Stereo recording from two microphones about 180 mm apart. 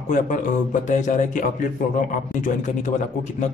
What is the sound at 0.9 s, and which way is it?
Speech, 40° left (ahead or behind).